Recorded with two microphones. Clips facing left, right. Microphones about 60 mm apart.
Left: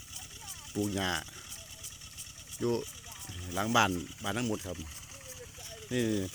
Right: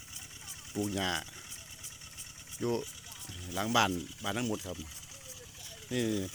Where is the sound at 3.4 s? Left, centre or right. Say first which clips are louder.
Left 1 dB; centre.